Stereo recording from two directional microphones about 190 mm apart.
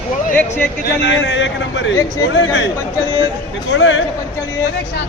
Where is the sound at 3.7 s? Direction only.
75° left (ahead or behind).